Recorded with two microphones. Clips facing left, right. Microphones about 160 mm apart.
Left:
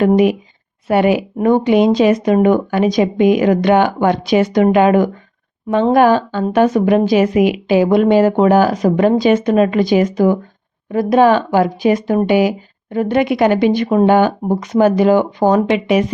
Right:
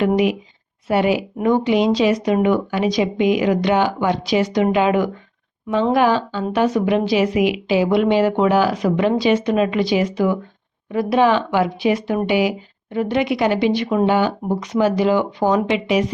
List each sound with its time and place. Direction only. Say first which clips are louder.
0.9 s speech: left 4 dB; 55° left (ahead or behind)